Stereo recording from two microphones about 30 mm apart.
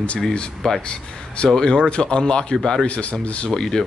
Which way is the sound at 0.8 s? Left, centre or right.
Left.